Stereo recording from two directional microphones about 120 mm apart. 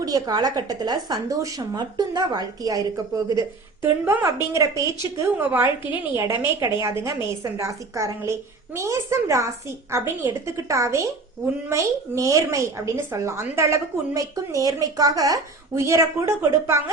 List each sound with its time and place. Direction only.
0.0 s a woman's voice: 35° right (ahead or behind)
3.8 s speech: 20° right (ahead or behind)